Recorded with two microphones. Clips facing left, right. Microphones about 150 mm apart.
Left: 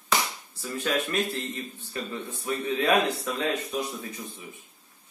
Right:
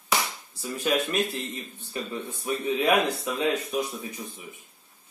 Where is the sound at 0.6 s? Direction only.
15° right (ahead or behind).